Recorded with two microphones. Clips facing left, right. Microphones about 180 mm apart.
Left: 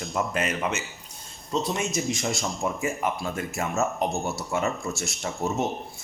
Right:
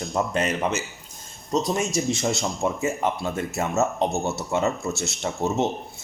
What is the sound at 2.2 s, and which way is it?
A man's voice, 20° right (ahead or behind).